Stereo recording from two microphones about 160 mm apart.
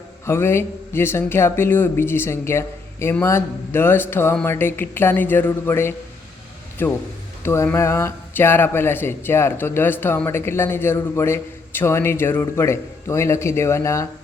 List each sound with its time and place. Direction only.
0.3 s speech: 15° left (ahead or behind)